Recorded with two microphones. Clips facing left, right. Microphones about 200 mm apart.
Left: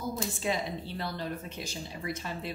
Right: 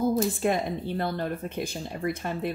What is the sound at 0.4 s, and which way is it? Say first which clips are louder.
Speech: right 6 dB; 55° right (ahead or behind).